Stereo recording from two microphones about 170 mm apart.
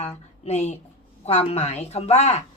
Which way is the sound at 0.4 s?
40° left (ahead or behind).